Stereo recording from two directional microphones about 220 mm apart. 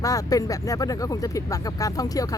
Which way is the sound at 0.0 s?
15° left (ahead or behind).